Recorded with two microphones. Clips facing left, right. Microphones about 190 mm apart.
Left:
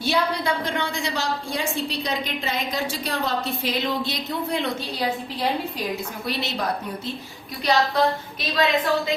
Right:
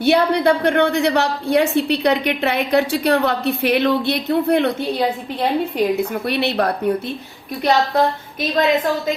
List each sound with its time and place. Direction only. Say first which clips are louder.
0.0 s a woman's voice: right 9 dB; 60° right (ahead or behind)
7.6 s a woman's voice: right 4 dB; 50° right (ahead or behind)